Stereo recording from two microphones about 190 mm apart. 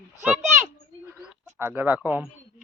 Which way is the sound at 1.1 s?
10° right (ahead or behind).